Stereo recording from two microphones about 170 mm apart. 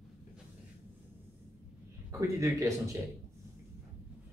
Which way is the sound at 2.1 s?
20° right (ahead or behind).